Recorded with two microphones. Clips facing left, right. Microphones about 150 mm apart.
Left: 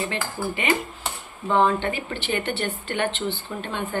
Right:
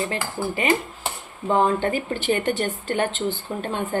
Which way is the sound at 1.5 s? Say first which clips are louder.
Right 1 dB; 40° right (ahead or behind).